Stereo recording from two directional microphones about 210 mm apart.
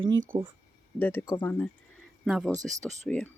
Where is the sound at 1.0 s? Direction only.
10° left (ahead or behind).